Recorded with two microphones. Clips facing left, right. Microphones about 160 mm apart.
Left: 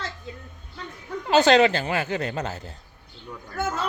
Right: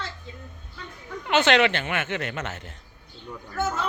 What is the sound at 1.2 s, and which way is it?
A woman's voice, 35° left (ahead or behind).